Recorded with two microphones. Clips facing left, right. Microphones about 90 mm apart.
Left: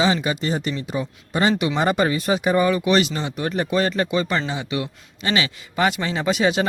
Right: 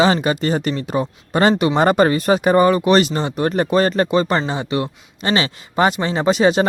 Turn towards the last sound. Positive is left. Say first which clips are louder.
# right 5 dB
turn(degrees=-35)  # may be behind; listen again after turning